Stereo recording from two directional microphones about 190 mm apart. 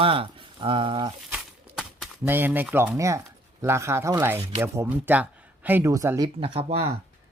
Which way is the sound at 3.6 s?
15° right (ahead or behind).